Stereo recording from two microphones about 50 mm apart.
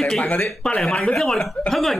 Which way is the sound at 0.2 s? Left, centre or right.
Left.